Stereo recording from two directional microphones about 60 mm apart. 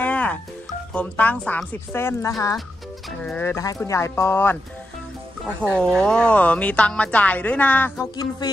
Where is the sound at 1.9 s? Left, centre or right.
Left.